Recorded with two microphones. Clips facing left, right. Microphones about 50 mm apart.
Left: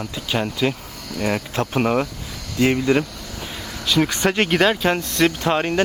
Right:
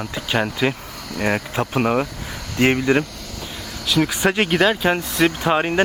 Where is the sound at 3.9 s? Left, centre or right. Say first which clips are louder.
Even; centre.